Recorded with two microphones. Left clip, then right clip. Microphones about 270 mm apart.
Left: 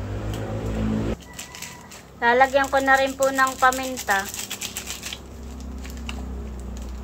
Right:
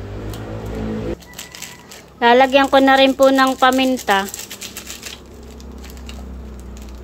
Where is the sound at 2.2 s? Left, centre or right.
Right.